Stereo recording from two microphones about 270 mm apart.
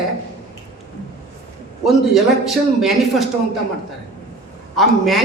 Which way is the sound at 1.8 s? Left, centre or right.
Centre.